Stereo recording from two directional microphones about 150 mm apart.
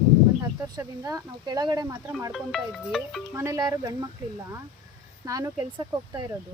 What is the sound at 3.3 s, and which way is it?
Speech, 20° right (ahead or behind).